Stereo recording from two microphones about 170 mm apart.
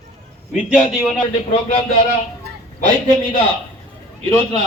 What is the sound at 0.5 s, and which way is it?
Speech, 5° right (ahead or behind).